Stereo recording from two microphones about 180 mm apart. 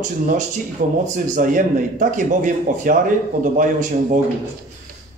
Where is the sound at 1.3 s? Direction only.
45° right (ahead or behind).